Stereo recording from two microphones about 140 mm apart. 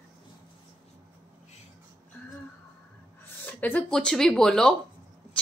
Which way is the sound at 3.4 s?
10° left (ahead or behind).